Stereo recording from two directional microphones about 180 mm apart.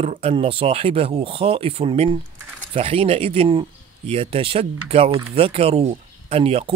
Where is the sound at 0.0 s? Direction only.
35° right (ahead or behind).